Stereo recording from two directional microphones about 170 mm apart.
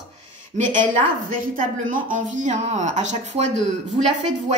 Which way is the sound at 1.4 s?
55° right (ahead or behind).